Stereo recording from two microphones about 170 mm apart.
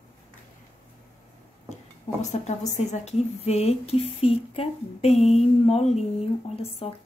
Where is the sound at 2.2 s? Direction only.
40° left (ahead or behind).